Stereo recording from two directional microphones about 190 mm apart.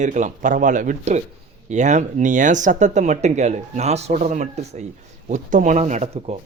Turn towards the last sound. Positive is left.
turn(degrees=-35)  # may be behind; listen again after turning